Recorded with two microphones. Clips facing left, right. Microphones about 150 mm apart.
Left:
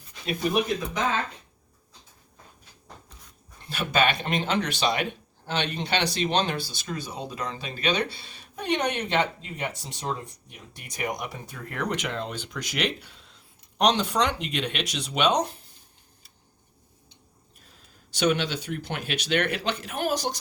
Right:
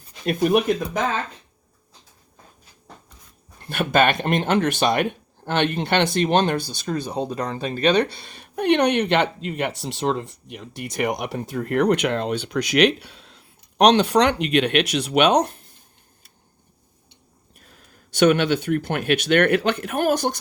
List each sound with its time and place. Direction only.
3.7 s speech: 55° right (ahead or behind)
7.3 s speech: 35° right (ahead or behind)
7.5 s speech: 50° right (ahead or behind)
17.7 s speech: 60° right (ahead or behind)